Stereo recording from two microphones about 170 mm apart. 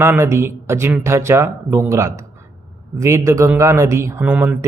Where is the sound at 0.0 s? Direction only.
15° right (ahead or behind).